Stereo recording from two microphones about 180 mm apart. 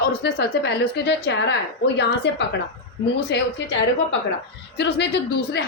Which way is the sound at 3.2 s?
65° left (ahead or behind).